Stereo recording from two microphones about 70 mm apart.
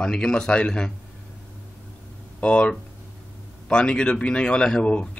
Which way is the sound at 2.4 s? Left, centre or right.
Centre.